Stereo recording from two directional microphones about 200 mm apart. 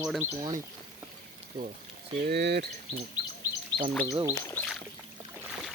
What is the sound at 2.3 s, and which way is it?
Speech, 55° right (ahead or behind).